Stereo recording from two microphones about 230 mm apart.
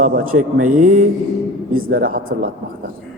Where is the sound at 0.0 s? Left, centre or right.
Right.